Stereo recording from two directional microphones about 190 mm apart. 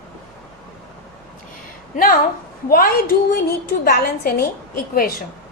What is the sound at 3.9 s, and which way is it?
A woman's voice, 55° left (ahead or behind).